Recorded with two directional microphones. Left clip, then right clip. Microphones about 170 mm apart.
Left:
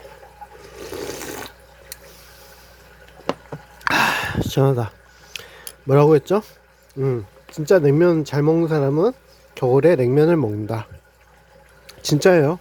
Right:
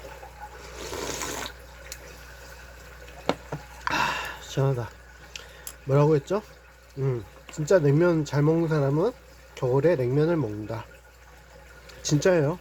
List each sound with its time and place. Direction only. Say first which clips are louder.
0.8 s toilet flush: left 2 dB; 50° left (ahead or behind)
3.8 s a sound: left 8 dB; 50° left (ahead or behind)
5.3 s keys jangling: left 7 dB; 45° left (ahead or behind)
5.9 s speech: left 8 dB; 45° left (ahead or behind)
11.9 s speech: left 7 dB; 45° left (ahead or behind)